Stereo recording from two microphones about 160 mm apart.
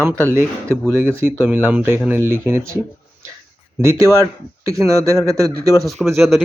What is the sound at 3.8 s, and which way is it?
Speech, 15° right (ahead or behind).